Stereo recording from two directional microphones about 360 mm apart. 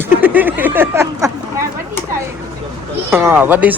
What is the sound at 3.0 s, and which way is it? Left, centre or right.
Speech, centre.